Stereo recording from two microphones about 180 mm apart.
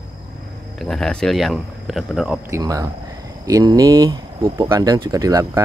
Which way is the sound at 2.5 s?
20° right (ahead or behind).